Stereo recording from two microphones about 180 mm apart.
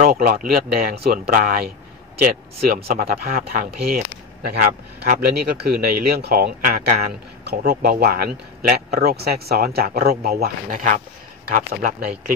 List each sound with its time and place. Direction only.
0.0 s speech: 55° right (ahead or behind)
2.6 s speech: 55° right (ahead or behind)